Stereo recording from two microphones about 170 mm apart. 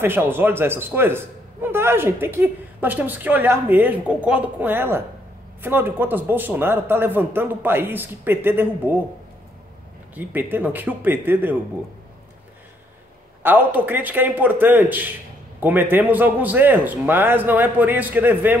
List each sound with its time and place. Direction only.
0.0 s a man's voice: 15° right (ahead or behind)
10.1 s a man's voice: 10° right (ahead or behind)
13.4 s a man's voice: 10° right (ahead or behind)